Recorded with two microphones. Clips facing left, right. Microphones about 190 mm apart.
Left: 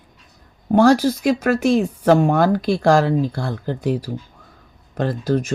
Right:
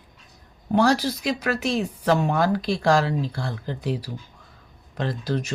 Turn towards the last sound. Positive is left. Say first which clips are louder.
# left 6 dB
turn(degrees=45)  # may be behind; listen again after turning